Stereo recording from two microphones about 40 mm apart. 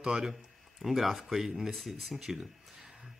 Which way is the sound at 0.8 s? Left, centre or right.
Centre.